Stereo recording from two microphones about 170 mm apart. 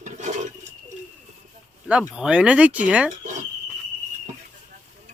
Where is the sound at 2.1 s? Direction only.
5° right (ahead or behind).